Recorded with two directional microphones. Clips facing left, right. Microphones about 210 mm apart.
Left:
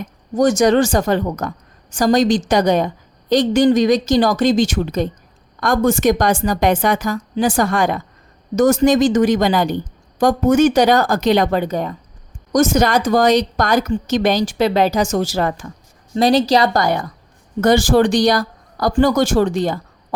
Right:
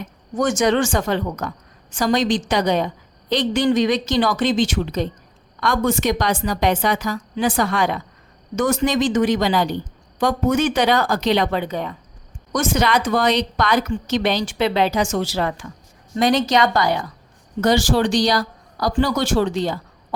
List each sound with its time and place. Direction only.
0.3 s a woman's voice: 40° left (ahead or behind)
16.1 s a woman's voice: 35° left (ahead or behind)
16.8 s a woman's voice: 50° left (ahead or behind)